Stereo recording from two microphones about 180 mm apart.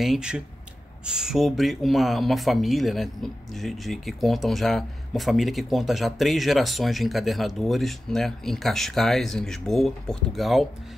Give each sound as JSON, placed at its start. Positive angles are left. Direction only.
{"t": 0.0, "sound": "speech", "side_deg": -5}